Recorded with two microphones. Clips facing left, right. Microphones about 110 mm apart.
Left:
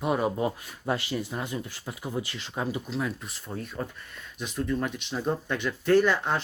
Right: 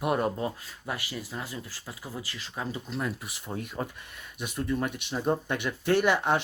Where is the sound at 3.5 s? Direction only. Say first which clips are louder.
Even; 15° right (ahead or behind).